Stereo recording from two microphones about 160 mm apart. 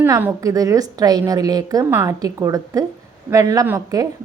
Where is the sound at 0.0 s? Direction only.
10° right (ahead or behind).